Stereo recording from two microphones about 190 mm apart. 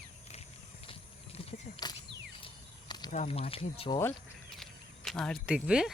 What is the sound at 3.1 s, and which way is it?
Speech, 35° left (ahead or behind).